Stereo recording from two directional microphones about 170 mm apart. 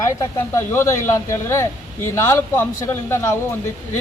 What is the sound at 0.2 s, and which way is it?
Speech, 15° left (ahead or behind).